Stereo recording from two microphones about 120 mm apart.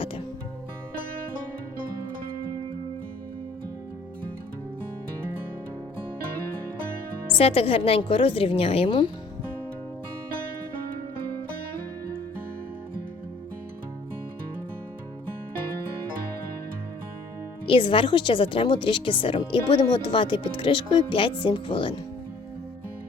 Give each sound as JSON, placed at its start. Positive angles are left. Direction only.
{"t": 7.3, "sound": "a woman's voice", "side_deg": 55}
{"t": 17.7, "sound": "a woman's voice", "side_deg": 45}